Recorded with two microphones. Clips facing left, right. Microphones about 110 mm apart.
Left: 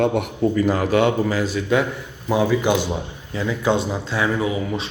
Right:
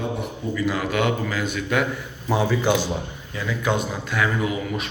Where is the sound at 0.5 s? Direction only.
40° left (ahead or behind).